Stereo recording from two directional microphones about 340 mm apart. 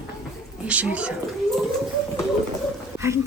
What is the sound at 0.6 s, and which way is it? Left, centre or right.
Speech, centre.